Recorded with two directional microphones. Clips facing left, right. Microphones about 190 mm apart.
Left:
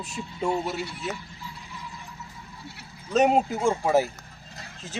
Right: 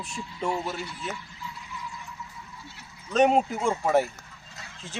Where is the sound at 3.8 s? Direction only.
5° left (ahead or behind).